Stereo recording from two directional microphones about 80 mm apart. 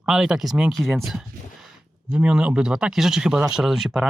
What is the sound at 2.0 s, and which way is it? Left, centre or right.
Speech, centre.